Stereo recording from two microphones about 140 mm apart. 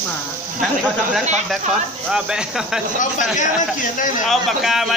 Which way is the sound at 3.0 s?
65° left (ahead or behind).